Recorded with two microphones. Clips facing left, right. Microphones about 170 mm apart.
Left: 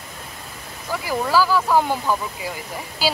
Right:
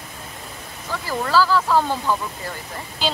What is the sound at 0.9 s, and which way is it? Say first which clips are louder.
Speech: even; 10° left (ahead or behind).